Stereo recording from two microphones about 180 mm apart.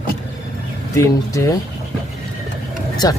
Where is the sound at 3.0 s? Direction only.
20° left (ahead or behind).